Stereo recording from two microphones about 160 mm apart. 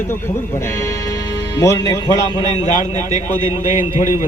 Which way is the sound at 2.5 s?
45° left (ahead or behind).